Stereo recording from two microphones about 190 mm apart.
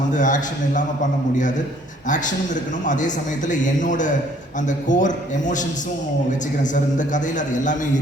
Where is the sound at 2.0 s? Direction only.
40° left (ahead or behind).